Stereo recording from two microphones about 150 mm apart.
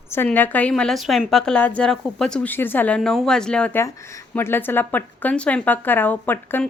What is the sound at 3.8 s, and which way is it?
A woman's voice, 20° left (ahead or behind).